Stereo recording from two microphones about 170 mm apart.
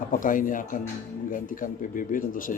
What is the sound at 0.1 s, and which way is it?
Speech, 55° left (ahead or behind).